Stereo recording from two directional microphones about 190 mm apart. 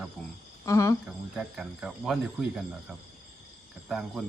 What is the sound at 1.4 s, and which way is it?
A woman's voice, centre (ahead or behind).